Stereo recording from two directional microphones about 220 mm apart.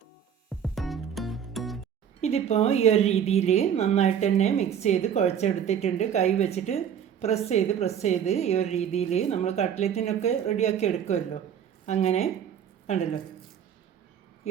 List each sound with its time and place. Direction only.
0.6 s music: centre (ahead or behind)
2.2 s a woman's voice: 30° left (ahead or behind)